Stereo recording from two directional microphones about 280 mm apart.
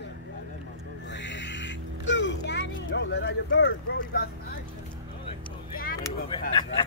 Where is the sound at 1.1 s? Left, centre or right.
Left.